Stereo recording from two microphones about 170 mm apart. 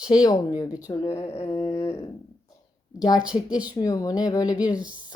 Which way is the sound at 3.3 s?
35° left (ahead or behind).